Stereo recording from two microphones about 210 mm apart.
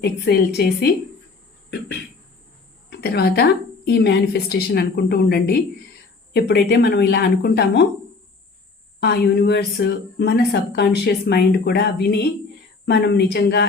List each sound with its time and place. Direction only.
0.0 s speech: 50° left (ahead or behind)
2.9 s speech: 50° left (ahead or behind)
9.0 s speech: 50° left (ahead or behind)